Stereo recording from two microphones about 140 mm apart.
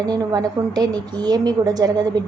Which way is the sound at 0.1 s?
25° right (ahead or behind).